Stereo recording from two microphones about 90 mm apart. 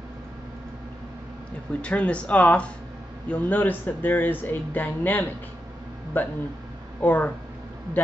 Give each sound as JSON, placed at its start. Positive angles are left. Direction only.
{"t": 1.7, "sound": "speech", "side_deg": 15}